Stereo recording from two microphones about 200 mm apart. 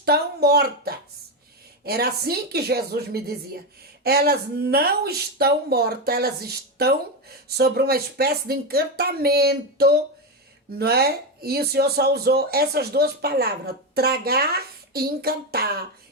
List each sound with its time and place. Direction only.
0.0 s speech: 50° right (ahead or behind)